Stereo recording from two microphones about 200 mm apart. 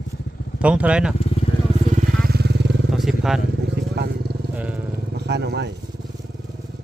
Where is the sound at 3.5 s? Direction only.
55° right (ahead or behind).